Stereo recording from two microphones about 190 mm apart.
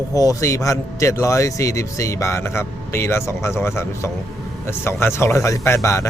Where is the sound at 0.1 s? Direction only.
20° left (ahead or behind).